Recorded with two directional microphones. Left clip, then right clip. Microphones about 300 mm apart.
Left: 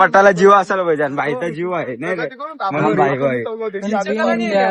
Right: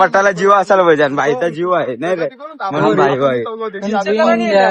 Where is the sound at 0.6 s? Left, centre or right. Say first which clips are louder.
Right 5 dB; centre.